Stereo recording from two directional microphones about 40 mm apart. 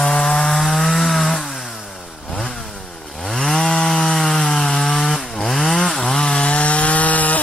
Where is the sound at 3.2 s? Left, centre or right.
Centre; by 7.4 s left.